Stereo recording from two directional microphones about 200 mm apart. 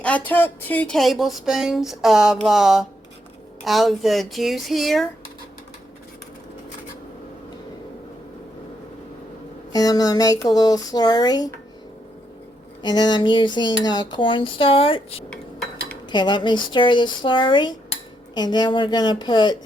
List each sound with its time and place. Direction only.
0.0 s speech: 5° left (ahead or behind)
9.7 s dishes: 20° left (ahead or behind)
12.8 s dishes: 20° left (ahead or behind)